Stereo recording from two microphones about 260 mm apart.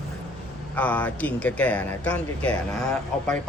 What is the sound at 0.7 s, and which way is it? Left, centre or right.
Speech, centre.